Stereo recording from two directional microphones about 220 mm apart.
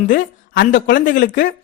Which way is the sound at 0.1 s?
45° left (ahead or behind).